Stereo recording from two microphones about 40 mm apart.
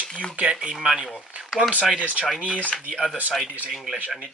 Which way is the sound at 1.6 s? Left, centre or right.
Right.